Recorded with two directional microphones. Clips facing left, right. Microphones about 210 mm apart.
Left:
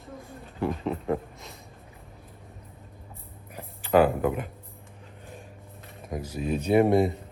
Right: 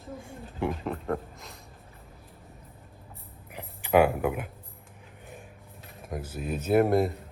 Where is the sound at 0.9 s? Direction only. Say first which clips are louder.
Left 3 dB; centre (ahead or behind).